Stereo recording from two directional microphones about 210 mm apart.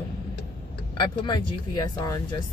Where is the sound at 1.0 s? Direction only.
20° left (ahead or behind).